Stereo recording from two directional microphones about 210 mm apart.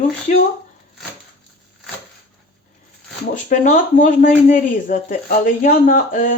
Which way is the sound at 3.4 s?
35° left (ahead or behind).